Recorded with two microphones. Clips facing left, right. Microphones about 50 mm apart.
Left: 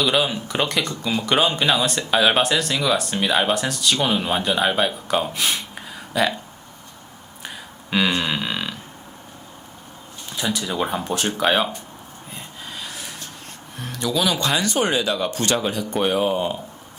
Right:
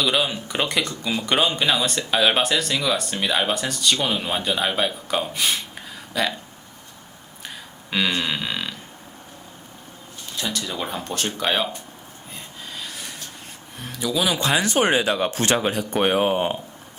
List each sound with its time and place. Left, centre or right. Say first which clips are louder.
0.0 s speech: left 2 dB; centre
7.4 s a sound: left 2 dB; centre
10.3 s speech: left 4 dB; centre
12.3 s snort: left 1 dB; centre
13.7 s speech: left 1 dB; centre
14.7 s speech: right 1 dB; right